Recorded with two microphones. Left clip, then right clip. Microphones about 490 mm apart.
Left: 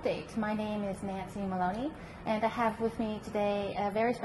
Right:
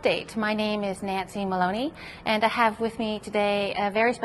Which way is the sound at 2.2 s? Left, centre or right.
Right.